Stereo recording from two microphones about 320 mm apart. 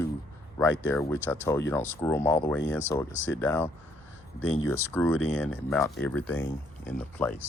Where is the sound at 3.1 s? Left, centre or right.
Left.